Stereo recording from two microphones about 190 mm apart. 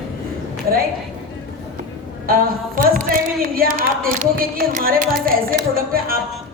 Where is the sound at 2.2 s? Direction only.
50° right (ahead or behind).